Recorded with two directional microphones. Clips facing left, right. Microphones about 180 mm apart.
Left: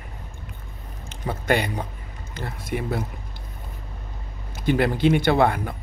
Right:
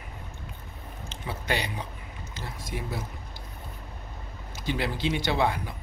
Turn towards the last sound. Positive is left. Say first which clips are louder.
# left 7 dB
turn(degrees=55)  # may be behind; listen again after turning